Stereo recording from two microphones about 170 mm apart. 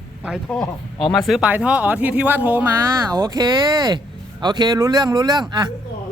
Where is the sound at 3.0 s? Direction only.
25° right (ahead or behind).